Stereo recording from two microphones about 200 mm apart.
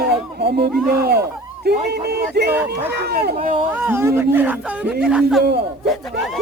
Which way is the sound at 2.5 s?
10° right (ahead or behind).